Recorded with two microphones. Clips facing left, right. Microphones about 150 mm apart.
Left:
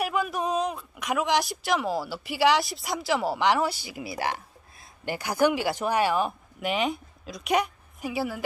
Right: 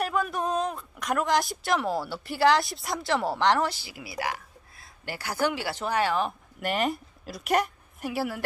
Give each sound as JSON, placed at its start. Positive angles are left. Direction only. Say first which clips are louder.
{"t": 0.0, "sound": "speech", "louder": "even", "side_deg": 5}
{"t": 3.9, "sound": "a woman's voice", "louder": "left 2 dB", "side_deg": 25}
{"t": 6.6, "sound": "a woman's voice", "louder": "even", "side_deg": 0}